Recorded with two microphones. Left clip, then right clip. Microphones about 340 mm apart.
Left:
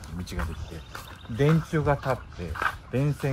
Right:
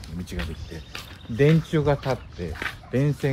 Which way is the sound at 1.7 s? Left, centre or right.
Left.